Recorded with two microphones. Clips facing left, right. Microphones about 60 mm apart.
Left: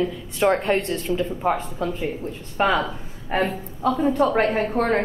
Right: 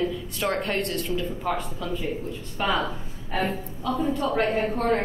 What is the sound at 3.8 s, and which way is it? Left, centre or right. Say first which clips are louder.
Speech: left 6 dB; left.